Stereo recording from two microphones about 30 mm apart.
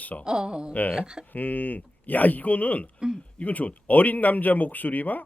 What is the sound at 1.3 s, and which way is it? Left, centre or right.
Speech, left.